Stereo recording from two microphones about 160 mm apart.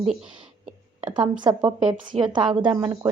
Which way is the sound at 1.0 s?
30° right (ahead or behind).